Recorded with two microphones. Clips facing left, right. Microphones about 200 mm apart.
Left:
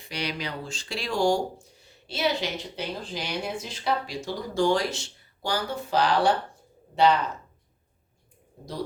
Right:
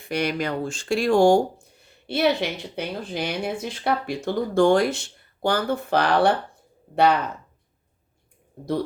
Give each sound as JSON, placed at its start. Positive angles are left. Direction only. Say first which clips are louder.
{"t": 0.0, "sound": "speech", "louder": "right 8 dB", "side_deg": -50}